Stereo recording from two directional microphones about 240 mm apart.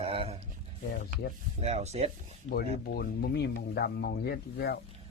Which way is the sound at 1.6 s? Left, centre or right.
Right.